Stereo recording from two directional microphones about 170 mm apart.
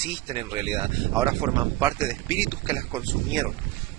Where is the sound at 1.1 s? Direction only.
20° right (ahead or behind).